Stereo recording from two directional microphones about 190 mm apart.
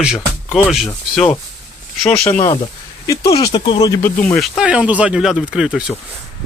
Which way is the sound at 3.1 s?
20° left (ahead or behind).